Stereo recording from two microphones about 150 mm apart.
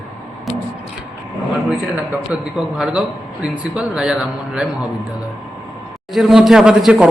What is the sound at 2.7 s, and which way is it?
A man's voice, 5° right (ahead or behind).